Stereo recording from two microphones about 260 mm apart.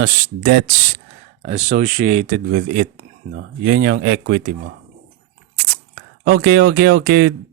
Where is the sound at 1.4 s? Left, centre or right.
Right.